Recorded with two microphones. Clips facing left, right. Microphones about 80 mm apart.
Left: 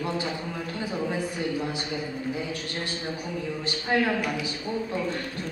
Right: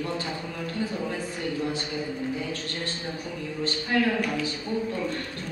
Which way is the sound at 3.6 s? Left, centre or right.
Centre.